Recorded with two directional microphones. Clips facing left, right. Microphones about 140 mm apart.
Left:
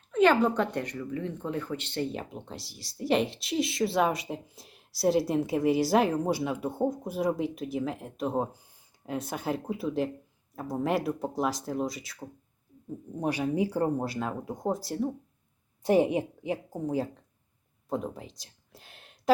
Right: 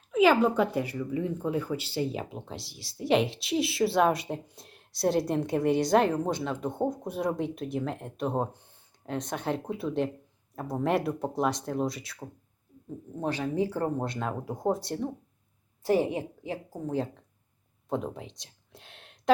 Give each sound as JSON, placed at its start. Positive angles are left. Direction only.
{"t": 0.1, "sound": "speech", "side_deg": -5}
{"t": 13.1, "sound": "speech", "side_deg": 15}
{"t": 15.8, "sound": "a woman's voice", "side_deg": 20}
{"t": 17.8, "sound": "a sound", "side_deg": 0}